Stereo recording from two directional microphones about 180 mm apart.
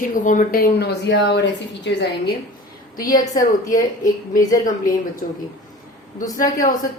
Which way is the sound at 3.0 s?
20° left (ahead or behind).